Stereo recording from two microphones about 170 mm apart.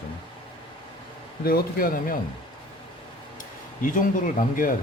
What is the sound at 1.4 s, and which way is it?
Speech, 60° left (ahead or behind).